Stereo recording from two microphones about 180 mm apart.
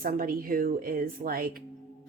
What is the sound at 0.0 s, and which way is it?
Speech, 50° right (ahead or behind).